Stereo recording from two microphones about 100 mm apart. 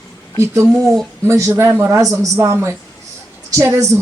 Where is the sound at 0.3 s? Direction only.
30° right (ahead or behind).